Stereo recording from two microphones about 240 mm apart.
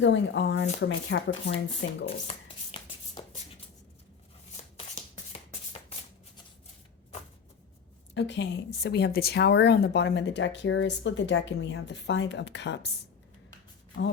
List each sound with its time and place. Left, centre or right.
0.0 s speech: left
2.3 s speech: left
2.7 s shuffle: centre
4.8 s a sound: left
8.1 s speech: left